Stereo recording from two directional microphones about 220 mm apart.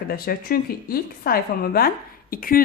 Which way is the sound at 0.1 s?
40° left (ahead or behind).